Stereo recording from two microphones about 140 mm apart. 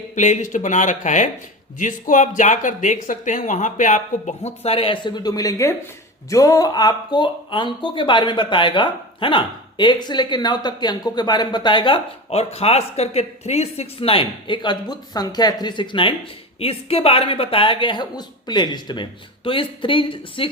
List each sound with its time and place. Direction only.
0.2 s speech: 55° left (ahead or behind); by 11.9 s 35° left (ahead or behind)
12.3 s speech: 45° left (ahead or behind)